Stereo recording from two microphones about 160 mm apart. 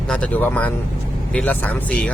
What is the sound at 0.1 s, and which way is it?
Speech, 10° left (ahead or behind).